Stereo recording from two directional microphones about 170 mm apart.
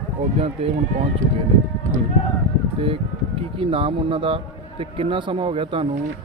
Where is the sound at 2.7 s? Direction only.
35° right (ahead or behind).